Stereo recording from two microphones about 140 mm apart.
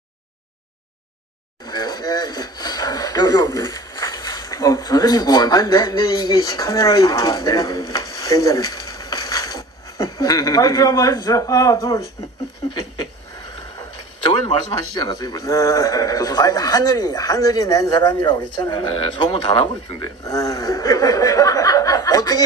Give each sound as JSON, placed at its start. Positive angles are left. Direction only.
{"t": 1.7, "sound": "speech", "side_deg": 30}
{"t": 14.5, "sound": "a man's voice", "side_deg": 30}